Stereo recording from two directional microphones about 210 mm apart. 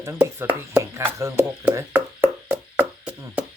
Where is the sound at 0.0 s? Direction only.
10° right (ahead or behind).